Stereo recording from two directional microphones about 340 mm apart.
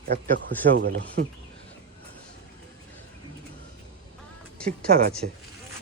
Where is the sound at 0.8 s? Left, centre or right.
Right.